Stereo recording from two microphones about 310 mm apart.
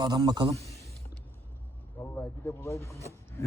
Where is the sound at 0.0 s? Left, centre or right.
Centre.